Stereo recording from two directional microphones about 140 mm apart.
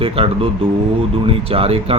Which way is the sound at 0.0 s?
40° right (ahead or behind).